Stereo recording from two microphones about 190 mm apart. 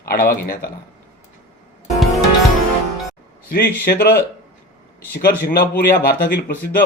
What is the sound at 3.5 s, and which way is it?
A man's voice, 50° left (ahead or behind).